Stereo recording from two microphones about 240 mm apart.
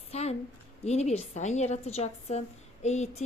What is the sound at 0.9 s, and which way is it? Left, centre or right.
A woman's voice, left.